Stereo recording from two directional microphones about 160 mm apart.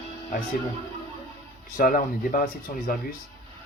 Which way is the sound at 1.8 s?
60° left (ahead or behind).